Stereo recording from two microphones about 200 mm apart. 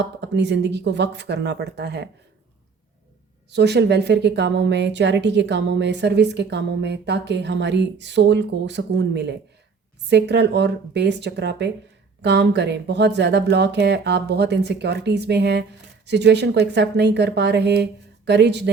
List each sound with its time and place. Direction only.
0.0 s a woman's voice: 60° right (ahead or behind)
3.5 s a woman's voice: 55° right (ahead or behind)